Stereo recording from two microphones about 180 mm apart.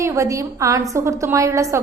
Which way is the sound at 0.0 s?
15° right (ahead or behind).